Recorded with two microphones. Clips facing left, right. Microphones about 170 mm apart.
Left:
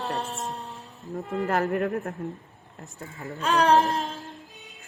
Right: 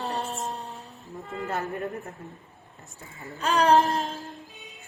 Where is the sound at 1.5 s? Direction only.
70° left (ahead or behind).